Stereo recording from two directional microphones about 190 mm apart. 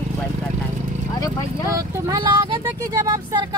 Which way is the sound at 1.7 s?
15° right (ahead or behind).